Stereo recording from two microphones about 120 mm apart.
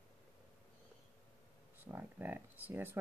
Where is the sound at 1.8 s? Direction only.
15° right (ahead or behind).